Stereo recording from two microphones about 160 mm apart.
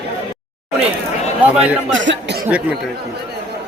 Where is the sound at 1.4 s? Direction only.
10° right (ahead or behind).